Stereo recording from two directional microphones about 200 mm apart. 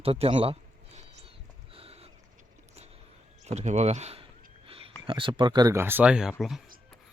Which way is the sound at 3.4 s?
35° right (ahead or behind).